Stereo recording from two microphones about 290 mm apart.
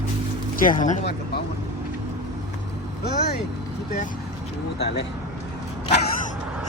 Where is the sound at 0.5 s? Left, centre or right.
Left.